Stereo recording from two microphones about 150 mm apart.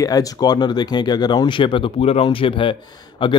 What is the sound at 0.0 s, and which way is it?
Speech, 25° left (ahead or behind).